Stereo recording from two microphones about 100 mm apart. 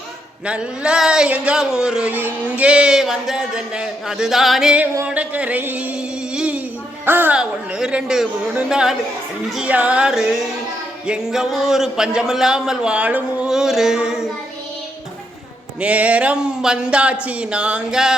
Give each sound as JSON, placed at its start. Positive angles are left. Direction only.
{"t": 0.4, "sound": "speech", "side_deg": -10}
{"t": 5.0, "sound": "a sound", "side_deg": -15}
{"t": 7.0, "sound": "speech", "side_deg": -20}
{"t": 7.3, "sound": "a man's voice", "side_deg": -10}
{"t": 15.8, "sound": "speech", "side_deg": -15}